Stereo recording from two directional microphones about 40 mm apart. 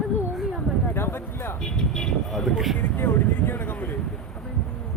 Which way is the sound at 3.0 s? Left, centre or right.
Left.